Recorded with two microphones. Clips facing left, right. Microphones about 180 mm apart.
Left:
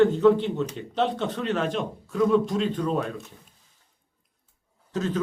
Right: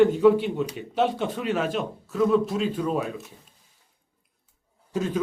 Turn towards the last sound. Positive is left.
turn(degrees=-10)  # may be behind; listen again after turning